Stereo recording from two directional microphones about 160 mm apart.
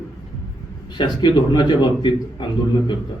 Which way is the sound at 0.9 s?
25° left (ahead or behind).